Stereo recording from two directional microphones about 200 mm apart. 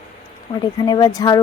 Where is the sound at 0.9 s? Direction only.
20° left (ahead or behind).